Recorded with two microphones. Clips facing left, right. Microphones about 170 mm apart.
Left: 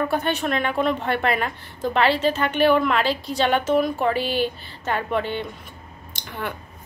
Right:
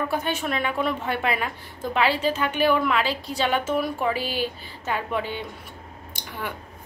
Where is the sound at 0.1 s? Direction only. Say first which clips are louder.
Left 3 dB; 5° right (ahead or behind).